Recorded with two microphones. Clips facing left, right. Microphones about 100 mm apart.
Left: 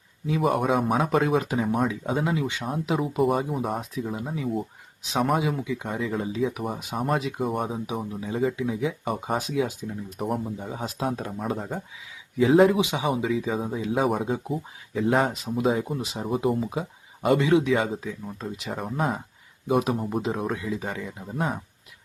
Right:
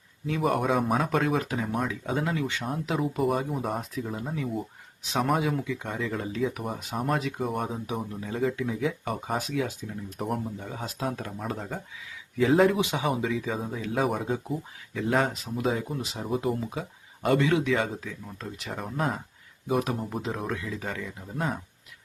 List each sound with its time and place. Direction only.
0.3 s speech: 5° left (ahead or behind)
7.2 s speech: 10° left (ahead or behind)
7.4 s speech: centre (ahead or behind)
10.6 s speech: 15° left (ahead or behind)
11.3 s speech: 5° left (ahead or behind)
15.4 s speech: 15° left (ahead or behind)
16.2 s speech: 5° left (ahead or behind)
20.6 s speech: 15° left (ahead or behind)
21.3 s speech: 5° left (ahead or behind)